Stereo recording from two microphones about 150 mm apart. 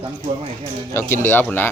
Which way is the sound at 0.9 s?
15° left (ahead or behind).